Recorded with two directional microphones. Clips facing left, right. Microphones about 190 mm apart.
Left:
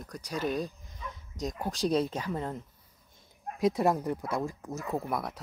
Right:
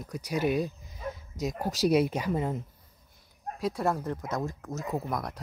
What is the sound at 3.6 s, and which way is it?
Speech, 20° left (ahead or behind).